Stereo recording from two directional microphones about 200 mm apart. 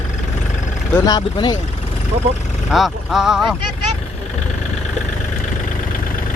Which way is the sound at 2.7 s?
Centre (ahead or behind).